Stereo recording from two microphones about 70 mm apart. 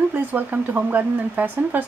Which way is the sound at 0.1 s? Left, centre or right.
Right.